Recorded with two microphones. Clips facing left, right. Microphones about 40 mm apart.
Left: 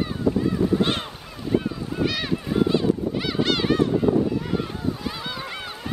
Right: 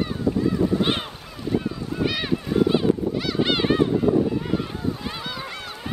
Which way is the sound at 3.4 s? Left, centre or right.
Centre.